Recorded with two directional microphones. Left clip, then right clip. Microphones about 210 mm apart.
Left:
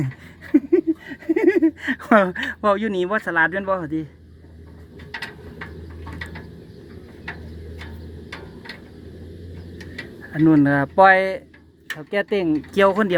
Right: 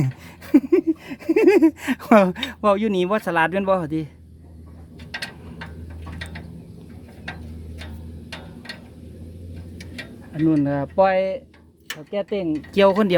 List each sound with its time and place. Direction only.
0.5 s a sound: 35° right (ahead or behind)
1.8 s speech: 15° right (ahead or behind)
10.4 s speech: 10° left (ahead or behind)
12.7 s speech: 10° right (ahead or behind)